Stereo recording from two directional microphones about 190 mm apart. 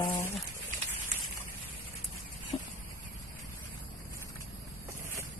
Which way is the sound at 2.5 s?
30° left (ahead or behind).